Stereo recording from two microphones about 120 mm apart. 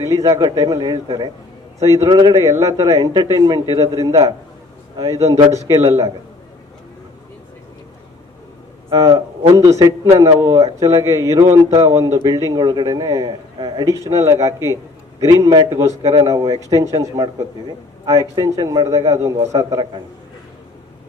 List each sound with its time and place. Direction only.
0.0 s a man's voice: 25° right (ahead or behind)
8.9 s a man's voice: 30° right (ahead or behind)
15.9 s speech: 65° right (ahead or behind)
16.2 s a man's voice: 30° right (ahead or behind)